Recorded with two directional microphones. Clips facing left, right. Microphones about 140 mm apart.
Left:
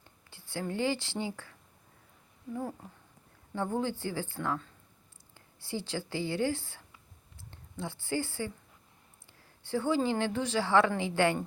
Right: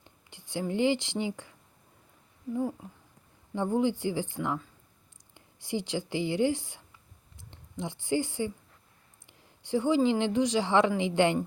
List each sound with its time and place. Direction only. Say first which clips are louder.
0.0 s speech: right 2 dB; 15° right (ahead or behind)
3.5 s a woman's voice: right 5 dB; 15° right (ahead or behind)